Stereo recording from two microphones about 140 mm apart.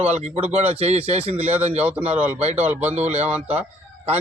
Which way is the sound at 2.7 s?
10° right (ahead or behind).